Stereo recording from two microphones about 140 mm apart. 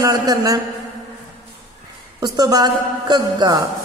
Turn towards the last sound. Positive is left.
turn(degrees=-30)  # may be behind; listen again after turning